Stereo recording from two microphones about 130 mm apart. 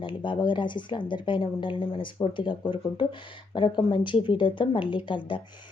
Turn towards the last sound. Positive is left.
turn(degrees=40)  # may be behind; listen again after turning